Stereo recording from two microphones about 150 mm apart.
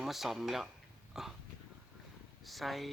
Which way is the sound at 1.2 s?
5° right (ahead or behind).